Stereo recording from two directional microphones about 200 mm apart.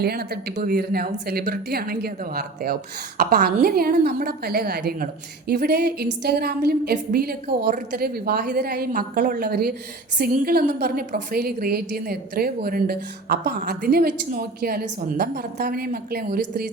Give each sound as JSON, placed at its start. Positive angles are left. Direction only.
{"t": 0.0, "sound": "a woman's voice", "side_deg": -50}